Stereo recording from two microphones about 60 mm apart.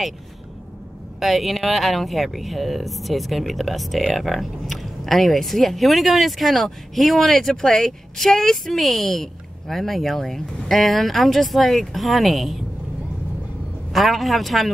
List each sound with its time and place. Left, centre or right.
1.2 s speech: centre
13.9 s speech: centre